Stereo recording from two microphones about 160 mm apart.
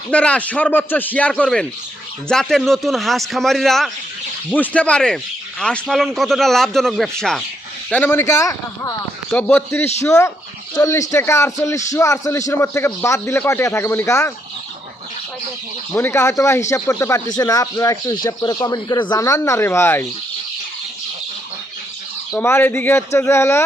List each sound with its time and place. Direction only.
0.1 s a man's voice: 5° left (ahead or behind)
16.0 s a man's voice: 15° left (ahead or behind)
22.4 s a man's voice: 15° left (ahead or behind)